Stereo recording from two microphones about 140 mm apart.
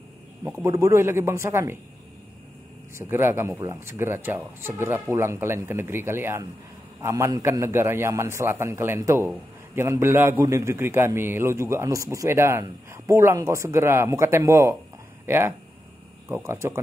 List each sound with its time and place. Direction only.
0.4 s a man's voice: 15° right (ahead or behind)
3.0 s a man's voice: 15° right (ahead or behind)